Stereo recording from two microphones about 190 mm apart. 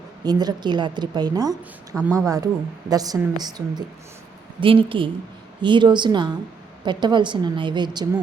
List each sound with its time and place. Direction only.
0.3 s a woman's voice: 20° right (ahead or behind)